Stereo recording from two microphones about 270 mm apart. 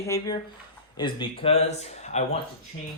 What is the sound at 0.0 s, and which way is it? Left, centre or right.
A man's voice, centre.